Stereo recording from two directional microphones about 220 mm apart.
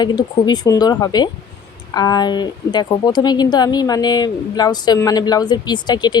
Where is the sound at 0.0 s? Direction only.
20° left (ahead or behind).